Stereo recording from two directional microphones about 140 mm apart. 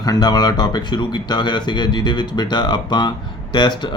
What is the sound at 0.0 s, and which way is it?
Speech, 30° left (ahead or behind).